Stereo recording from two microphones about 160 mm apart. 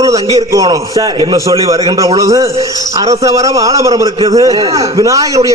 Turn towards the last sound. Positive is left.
turn(degrees=-20)  # may be behind; listen again after turning